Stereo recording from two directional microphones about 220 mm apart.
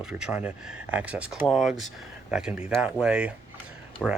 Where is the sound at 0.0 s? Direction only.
5° right (ahead or behind).